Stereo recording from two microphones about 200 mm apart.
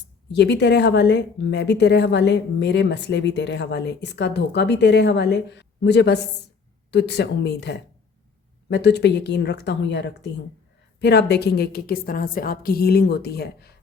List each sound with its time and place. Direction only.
0.3 s a woman's voice: 60° left (ahead or behind)